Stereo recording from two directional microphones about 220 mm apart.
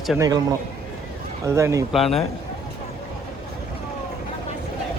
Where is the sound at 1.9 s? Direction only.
Centre (ahead or behind).